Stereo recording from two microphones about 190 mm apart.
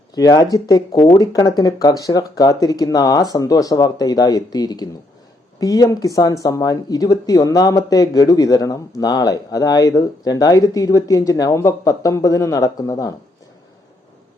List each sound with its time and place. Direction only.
0.2 s speech: 20° left (ahead or behind)